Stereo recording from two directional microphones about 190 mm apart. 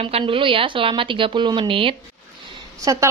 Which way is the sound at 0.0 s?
30° right (ahead or behind).